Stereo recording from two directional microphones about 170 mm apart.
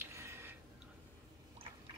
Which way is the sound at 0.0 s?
15° right (ahead or behind).